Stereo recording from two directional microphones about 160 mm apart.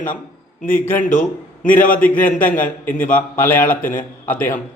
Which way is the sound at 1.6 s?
10° left (ahead or behind).